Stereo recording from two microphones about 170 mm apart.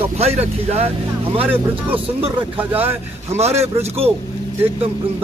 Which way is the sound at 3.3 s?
40° right (ahead or behind).